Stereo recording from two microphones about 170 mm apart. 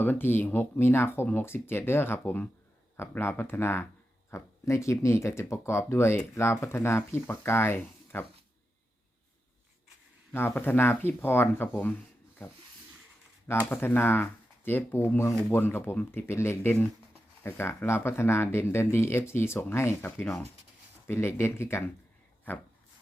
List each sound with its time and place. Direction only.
0.0 s speech: 10° left (ahead or behind)
10.3 s speech: 10° left (ahead or behind)
13.5 s speech: 15° left (ahead or behind)